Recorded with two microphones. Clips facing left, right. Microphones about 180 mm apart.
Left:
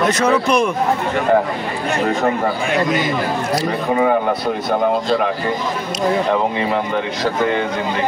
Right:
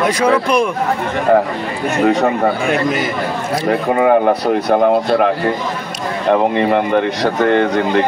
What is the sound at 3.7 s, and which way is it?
Speech, 55° right (ahead or behind).